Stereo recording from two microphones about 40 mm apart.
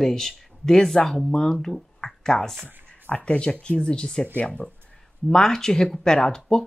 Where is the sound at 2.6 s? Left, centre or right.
Left.